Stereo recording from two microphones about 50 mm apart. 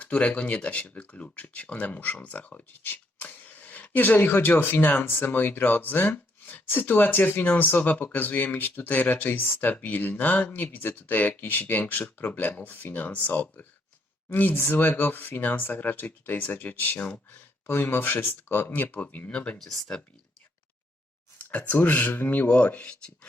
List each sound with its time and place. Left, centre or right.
0.0 s speech: left
11.6 s rub: left
12.1 s speech: left
14.5 s speech: left
19.5 s speech: centre
21.3 s a sound: left
21.8 s speech: left
22.4 s rub: left